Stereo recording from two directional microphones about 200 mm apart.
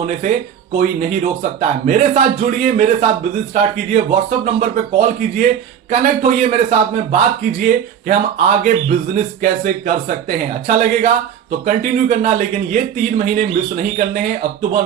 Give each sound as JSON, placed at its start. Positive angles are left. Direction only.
{"t": 0.0, "sound": "a man's voice", "side_deg": -40}
{"t": 1.9, "sound": "a man's voice", "side_deg": -40}